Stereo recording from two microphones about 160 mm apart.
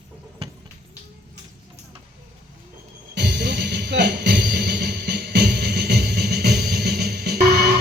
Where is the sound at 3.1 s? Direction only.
90° right.